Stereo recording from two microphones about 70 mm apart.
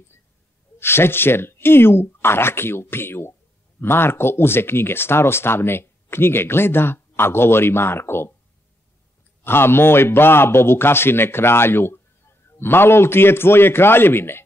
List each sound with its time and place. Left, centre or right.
0.7 s speech: left
9.4 s speech: left